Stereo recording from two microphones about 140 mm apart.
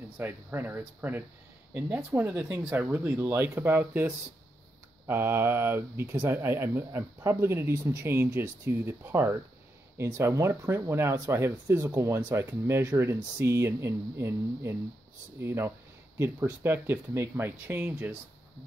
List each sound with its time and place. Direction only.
0.2 s speech: 15° right (ahead or behind)